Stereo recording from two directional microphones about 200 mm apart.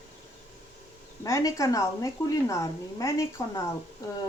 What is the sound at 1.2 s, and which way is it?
A woman's voice, 15° left (ahead or behind).